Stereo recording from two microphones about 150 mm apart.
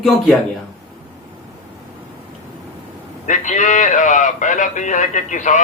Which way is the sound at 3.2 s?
55° left (ahead or behind).